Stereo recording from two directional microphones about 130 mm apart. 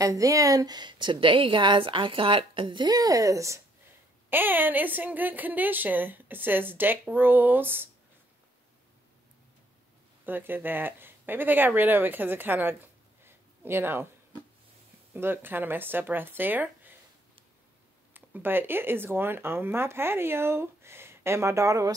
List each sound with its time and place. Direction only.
0.0 s a woman's voice: 25° right (ahead or behind)
10.2 s speech: 15° right (ahead or behind)
15.1 s speech: 15° right (ahead or behind)
18.1 s speech: 15° right (ahead or behind)